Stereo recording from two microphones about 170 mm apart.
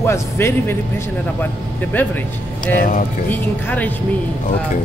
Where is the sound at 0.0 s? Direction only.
15° left (ahead or behind).